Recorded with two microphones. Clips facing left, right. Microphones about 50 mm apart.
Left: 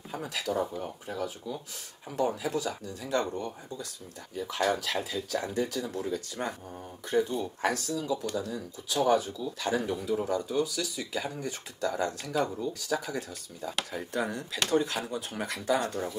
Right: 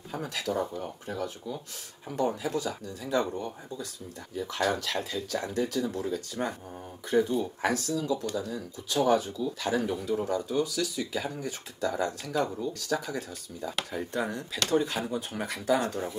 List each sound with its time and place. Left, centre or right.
0.1 s speech: centre